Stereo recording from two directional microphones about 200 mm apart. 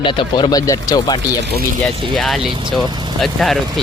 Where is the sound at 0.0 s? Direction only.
25° left (ahead or behind).